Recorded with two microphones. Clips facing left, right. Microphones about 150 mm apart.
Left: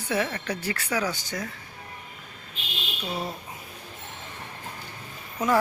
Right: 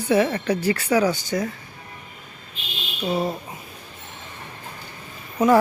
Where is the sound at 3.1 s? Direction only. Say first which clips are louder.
Right 9 dB; 35° right (ahead or behind).